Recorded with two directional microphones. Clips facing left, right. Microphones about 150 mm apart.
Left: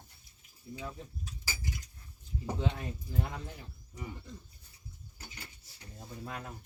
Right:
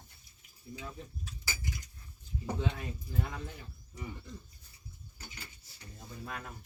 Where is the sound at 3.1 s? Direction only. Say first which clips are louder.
Left 1 dB; 25° left (ahead or behind).